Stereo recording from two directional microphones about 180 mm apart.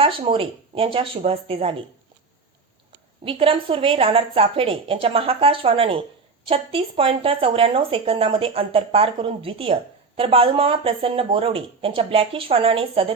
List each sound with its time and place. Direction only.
0.0 s speech: 30° right (ahead or behind)
3.2 s speech: 30° right (ahead or behind)